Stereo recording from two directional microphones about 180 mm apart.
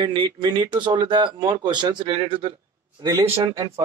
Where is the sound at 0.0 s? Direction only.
25° right (ahead or behind).